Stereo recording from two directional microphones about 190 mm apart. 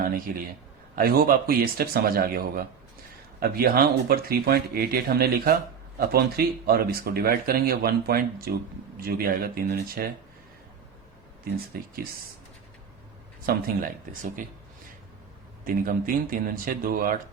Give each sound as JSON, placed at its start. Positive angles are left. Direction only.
{"t": 0.0, "sound": "speech", "side_deg": -50}
{"t": 11.7, "sound": "speech", "side_deg": -50}
{"t": 13.5, "sound": "speech", "side_deg": -50}
{"t": 15.6, "sound": "speech", "side_deg": -45}